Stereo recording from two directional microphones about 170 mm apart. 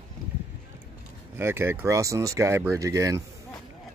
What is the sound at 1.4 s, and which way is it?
Speech, 15° right (ahead or behind).